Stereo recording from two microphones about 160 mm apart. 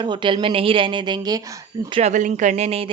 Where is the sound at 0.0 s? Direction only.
30° right (ahead or behind).